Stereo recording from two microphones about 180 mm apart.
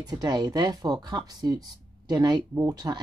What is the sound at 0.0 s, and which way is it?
Speech, 25° right (ahead or behind).